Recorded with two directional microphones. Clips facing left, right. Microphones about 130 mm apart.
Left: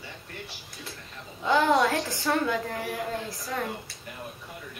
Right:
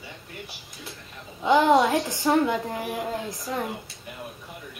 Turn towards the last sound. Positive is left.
turn(degrees=-20)  # may be behind; listen again after turning